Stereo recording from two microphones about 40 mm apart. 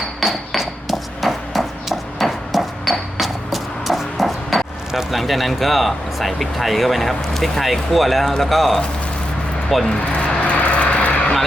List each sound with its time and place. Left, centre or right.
0.2 s a sound: centre
5.1 s speech: centre
10.1 s vehicle: left